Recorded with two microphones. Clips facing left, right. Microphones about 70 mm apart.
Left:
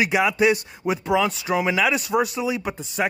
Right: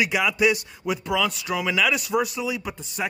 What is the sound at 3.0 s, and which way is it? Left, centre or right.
Speech, left.